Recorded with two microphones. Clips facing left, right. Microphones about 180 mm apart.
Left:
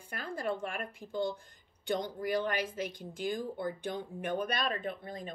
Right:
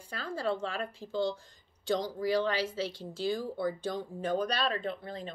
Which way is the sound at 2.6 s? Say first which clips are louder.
Right 3 dB; 15° left (ahead or behind).